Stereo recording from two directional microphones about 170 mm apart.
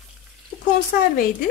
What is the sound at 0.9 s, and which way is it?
Speech, 65° left (ahead or behind).